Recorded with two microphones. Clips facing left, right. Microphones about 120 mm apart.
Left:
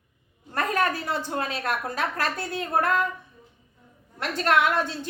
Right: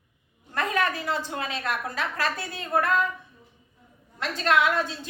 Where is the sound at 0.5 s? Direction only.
45° left (ahead or behind).